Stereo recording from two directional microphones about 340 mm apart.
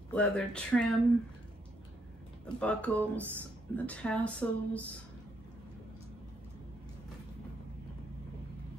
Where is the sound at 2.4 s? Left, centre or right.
Centre.